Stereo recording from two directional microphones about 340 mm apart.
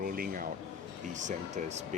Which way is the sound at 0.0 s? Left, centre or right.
Right.